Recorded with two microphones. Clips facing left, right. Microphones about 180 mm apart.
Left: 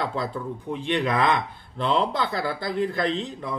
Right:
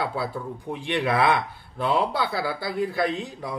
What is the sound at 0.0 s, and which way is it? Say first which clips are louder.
Speech: even; 5° right (ahead or behind).